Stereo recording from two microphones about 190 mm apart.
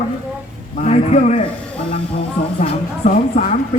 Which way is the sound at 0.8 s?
35° left (ahead or behind).